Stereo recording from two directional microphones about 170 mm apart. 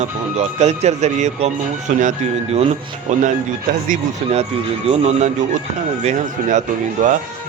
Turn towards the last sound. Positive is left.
turn(degrees=-45)  # may be behind; listen again after turning